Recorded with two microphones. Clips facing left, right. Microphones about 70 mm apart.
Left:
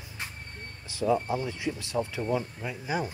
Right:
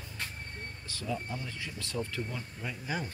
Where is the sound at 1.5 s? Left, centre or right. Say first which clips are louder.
Left 8 dB; centre.